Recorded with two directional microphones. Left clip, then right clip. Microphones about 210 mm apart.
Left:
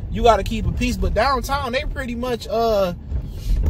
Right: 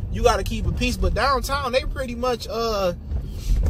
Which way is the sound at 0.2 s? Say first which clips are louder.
Left 4 dB; 10° left (ahead or behind).